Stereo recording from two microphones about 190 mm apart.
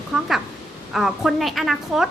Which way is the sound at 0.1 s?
Centre (ahead or behind).